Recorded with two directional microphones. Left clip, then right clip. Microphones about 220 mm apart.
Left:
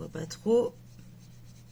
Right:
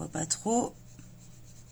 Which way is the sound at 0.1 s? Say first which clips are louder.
Right 5 dB; 55° right (ahead or behind).